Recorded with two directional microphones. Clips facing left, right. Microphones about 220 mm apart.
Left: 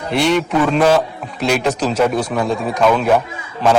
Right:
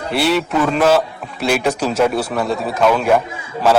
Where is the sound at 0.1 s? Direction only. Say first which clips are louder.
Left 1 dB; 5° right (ahead or behind).